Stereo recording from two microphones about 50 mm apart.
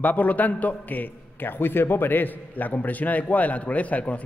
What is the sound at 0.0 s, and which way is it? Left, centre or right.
A man's voice, left.